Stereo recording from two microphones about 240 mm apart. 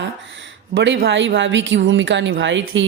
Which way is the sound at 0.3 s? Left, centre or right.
Right.